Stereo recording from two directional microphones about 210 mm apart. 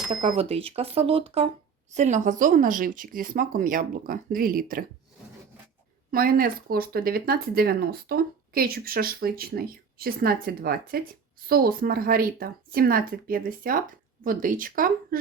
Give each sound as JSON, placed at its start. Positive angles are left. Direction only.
{"t": 0.1, "sound": "speech", "side_deg": -25}
{"t": 6.1, "sound": "speech", "side_deg": -45}